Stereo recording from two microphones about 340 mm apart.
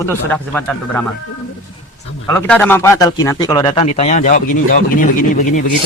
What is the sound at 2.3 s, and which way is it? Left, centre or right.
A man's voice, centre.